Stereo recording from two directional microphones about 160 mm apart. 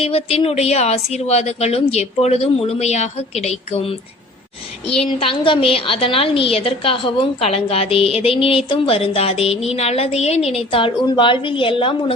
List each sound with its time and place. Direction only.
0.0 s a woman's voice: 35° left (ahead or behind)